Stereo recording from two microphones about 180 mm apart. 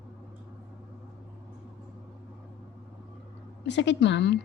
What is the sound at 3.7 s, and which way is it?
Speech, 80° left.